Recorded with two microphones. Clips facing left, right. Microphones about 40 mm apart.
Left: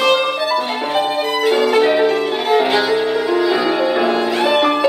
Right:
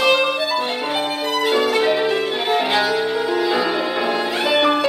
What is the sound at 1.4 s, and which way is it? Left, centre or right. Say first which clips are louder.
Music: left 4 dB; centre.